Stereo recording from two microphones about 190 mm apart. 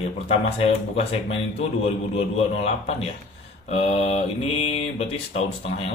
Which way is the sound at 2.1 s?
35° left (ahead or behind).